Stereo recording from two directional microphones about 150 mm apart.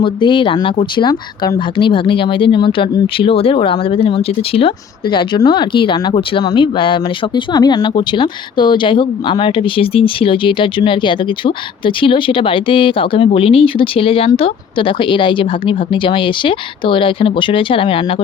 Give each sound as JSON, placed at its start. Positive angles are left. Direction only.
{"t": 0.0, "sound": "speech", "side_deg": 35}